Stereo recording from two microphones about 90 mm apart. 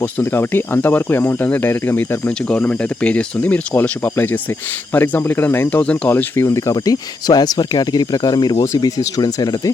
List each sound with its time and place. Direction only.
0.0 s speech: 20° left (ahead or behind)
6.1 s speech: 25° left (ahead or behind); by 9.7 s 45° left (ahead or behind)